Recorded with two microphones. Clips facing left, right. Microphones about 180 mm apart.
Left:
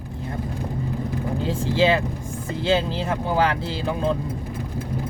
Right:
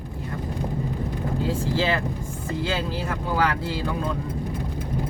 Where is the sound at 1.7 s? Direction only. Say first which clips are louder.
Left 4 dB; 20° left (ahead or behind).